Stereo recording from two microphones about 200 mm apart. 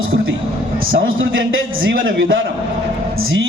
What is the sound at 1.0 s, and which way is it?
A man's voice, 80° right.